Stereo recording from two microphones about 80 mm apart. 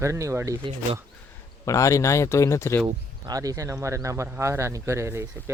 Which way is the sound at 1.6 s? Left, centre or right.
Left.